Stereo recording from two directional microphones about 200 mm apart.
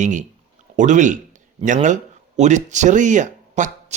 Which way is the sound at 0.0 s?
40° right (ahead or behind).